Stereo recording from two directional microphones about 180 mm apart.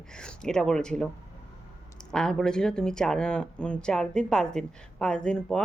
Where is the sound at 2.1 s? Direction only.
5° left (ahead or behind).